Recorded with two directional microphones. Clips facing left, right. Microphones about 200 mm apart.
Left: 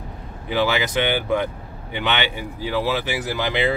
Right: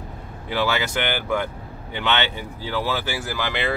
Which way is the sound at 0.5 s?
15° left (ahead or behind).